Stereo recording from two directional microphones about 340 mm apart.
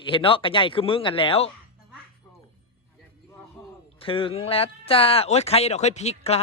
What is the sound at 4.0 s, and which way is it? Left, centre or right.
Speech, centre.